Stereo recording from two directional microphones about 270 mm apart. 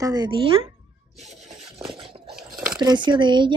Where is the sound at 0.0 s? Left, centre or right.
Centre.